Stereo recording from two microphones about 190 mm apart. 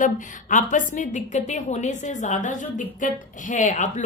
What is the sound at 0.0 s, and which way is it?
A woman's voice, 40° left (ahead or behind).